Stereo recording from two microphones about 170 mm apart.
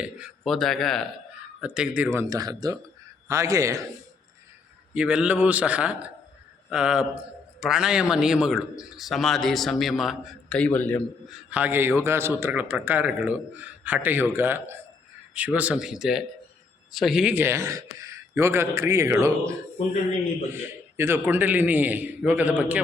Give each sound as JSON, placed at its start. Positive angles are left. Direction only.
{"t": 0.0, "sound": "a man's voice", "side_deg": -5}
{"t": 4.9, "sound": "a man's voice", "side_deg": -5}
{"t": 11.3, "sound": "a man's voice", "side_deg": -10}